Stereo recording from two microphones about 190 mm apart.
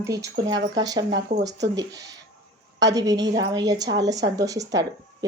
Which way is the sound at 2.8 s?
20° right (ahead or behind).